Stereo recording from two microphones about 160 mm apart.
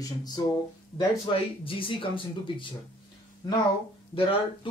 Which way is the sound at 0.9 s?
35° left (ahead or behind).